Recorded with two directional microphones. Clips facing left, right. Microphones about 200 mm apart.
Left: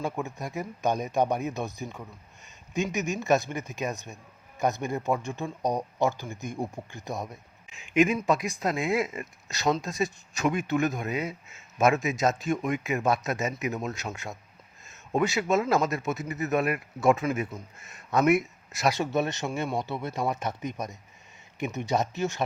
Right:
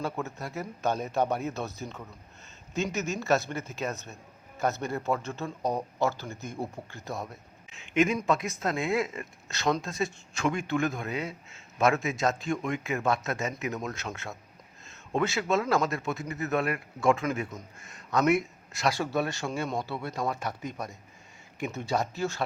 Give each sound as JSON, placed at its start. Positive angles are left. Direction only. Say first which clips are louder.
{"t": 0.0, "sound": "speech", "louder": "left 1 dB", "side_deg": 15}